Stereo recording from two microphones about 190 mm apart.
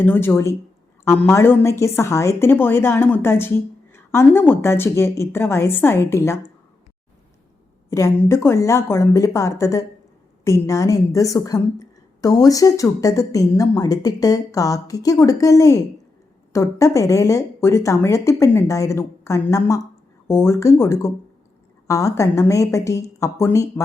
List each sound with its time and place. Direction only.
0.0 s a woman's voice: 10° left (ahead or behind)
7.9 s a woman's voice: 15° left (ahead or behind)